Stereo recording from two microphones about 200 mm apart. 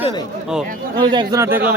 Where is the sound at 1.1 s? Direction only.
20° right (ahead or behind).